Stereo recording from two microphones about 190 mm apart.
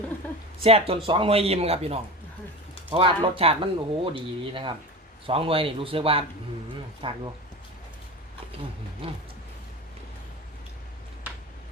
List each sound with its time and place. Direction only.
0.6 s a man's voice: 30° right (ahead or behind)
9.0 s speech: 30° right (ahead or behind)